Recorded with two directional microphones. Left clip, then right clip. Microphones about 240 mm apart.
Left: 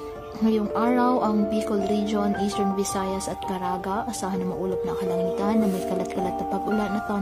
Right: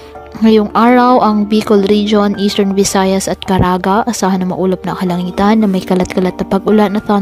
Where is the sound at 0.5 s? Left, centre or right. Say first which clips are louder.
Right 14 dB; right.